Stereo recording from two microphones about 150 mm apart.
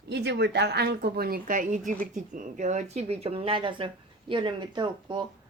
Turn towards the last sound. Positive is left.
turn(degrees=-30)  # may be behind; listen again after turning